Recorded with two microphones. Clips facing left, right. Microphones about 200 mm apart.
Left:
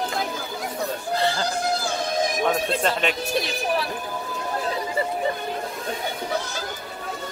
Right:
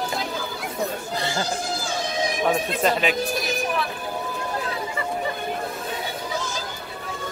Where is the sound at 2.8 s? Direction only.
5° right (ahead or behind).